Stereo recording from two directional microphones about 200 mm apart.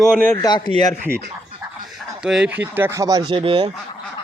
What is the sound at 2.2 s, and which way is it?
Speech, 5° right (ahead or behind).